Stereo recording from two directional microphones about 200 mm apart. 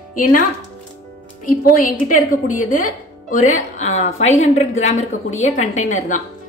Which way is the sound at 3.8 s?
35° left (ahead or behind).